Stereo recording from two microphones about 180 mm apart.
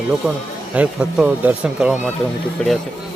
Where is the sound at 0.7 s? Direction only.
5° right (ahead or behind).